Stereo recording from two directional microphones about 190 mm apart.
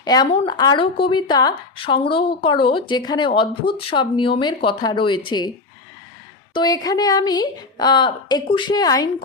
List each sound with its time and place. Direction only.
0.0 s a woman's voice: 20° left (ahead or behind)
6.5 s a woman's voice: 20° left (ahead or behind)